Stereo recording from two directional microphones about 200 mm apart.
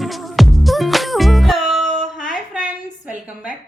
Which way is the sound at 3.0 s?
5° right (ahead or behind).